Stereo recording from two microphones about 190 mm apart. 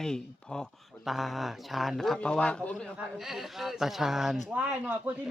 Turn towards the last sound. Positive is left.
turn(degrees=-5)  # may be behind; listen again after turning